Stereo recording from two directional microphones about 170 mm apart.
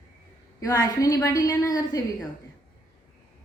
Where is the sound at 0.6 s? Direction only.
20° left (ahead or behind).